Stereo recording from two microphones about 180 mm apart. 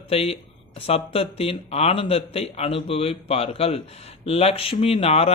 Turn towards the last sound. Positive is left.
turn(degrees=35)  # may be behind; listen again after turning